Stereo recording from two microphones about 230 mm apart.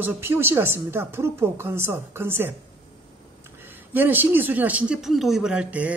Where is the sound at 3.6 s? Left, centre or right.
Centre.